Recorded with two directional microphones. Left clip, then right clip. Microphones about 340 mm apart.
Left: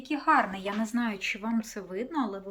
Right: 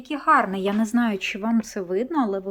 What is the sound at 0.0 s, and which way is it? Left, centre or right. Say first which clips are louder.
Speech: right 5 dB; centre.